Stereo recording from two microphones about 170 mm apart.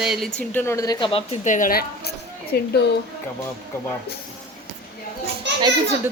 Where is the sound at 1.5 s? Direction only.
50° left (ahead or behind); by 2.8 s 70° left (ahead or behind).